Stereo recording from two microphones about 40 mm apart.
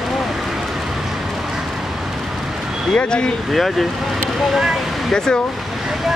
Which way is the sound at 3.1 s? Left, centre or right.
Left.